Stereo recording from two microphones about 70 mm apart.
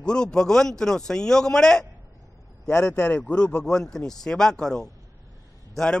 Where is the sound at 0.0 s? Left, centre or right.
Centre.